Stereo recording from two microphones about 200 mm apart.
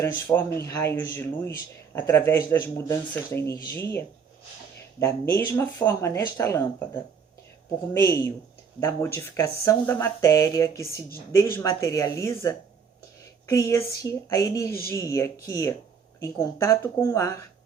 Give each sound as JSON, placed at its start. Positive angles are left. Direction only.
{"t": 0.0, "sound": "speech", "side_deg": 10}
{"t": 5.3, "sound": "speech", "side_deg": 15}